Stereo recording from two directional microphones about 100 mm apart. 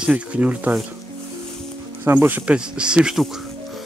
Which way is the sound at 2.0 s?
20° right (ahead or behind).